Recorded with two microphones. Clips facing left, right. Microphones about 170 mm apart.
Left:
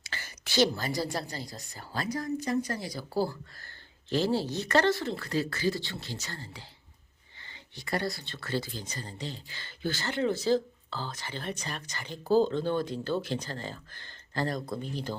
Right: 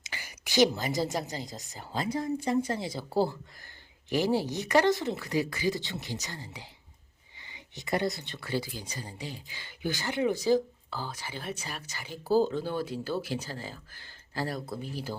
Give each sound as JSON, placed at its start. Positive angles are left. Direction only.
{"t": 0.0, "sound": "speech", "side_deg": -15}